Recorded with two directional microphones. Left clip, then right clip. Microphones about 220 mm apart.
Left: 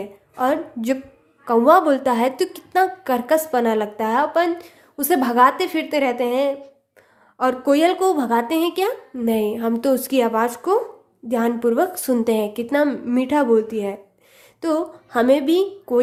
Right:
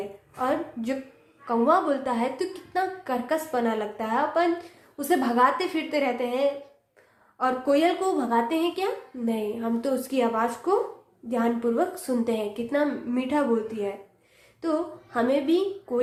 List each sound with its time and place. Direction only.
0.3 s a woman's voice: 45° left (ahead or behind)